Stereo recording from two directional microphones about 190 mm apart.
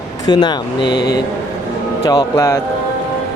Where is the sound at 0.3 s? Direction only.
20° left (ahead or behind).